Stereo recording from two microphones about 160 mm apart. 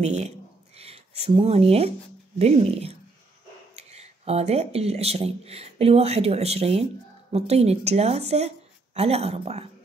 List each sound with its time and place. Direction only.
0.0 s speech: 45° right (ahead or behind)